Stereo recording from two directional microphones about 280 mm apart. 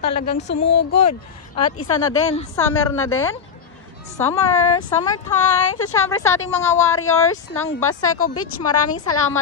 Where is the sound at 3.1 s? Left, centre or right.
Centre.